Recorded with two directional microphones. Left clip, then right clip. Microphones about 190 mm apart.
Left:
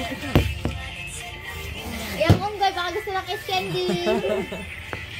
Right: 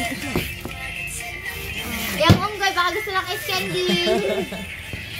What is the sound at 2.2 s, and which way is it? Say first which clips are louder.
Speech: right 2 dB; 10° right (ahead or behind).